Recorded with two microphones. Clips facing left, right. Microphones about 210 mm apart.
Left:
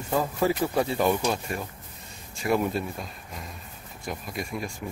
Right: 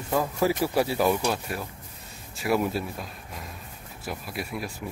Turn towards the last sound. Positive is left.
turn(degrees=-5)  # may be behind; listen again after turning